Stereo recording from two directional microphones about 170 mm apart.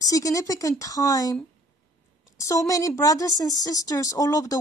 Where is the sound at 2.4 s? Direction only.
20° left (ahead or behind).